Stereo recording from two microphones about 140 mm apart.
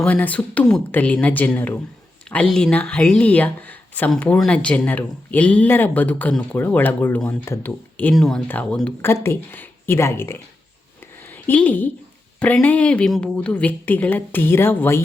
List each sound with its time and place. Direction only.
0.0 s a woman's voice: 10° left (ahead or behind)